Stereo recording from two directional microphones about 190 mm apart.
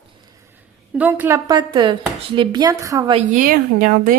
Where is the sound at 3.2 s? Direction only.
45° right (ahead or behind).